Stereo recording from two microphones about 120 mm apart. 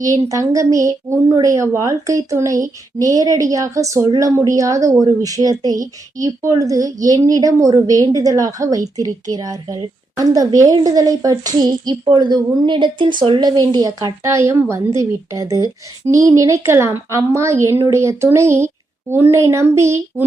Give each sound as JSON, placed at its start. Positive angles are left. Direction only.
{"t": 0.0, "sound": "a woman's voice", "side_deg": -30}
{"t": 14.2, "sound": "a woman's voice", "side_deg": -25}